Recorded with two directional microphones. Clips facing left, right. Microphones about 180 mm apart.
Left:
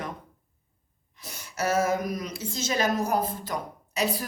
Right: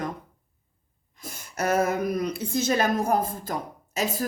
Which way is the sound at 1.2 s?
50° right (ahead or behind).